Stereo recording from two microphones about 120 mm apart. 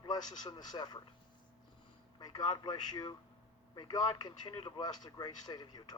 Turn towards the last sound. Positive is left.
turn(degrees=35)  # may be behind; listen again after turning